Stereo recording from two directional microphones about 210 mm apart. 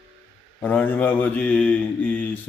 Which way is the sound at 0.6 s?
5° left (ahead or behind).